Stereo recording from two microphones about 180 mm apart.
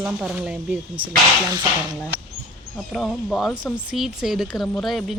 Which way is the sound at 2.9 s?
Centre (ahead or behind).